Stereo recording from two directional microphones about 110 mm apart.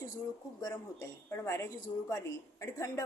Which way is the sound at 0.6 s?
30° left (ahead or behind).